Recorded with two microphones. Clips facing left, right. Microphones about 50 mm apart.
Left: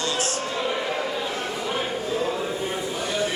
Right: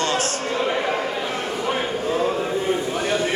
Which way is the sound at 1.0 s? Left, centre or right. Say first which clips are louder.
Right 2 dB; right.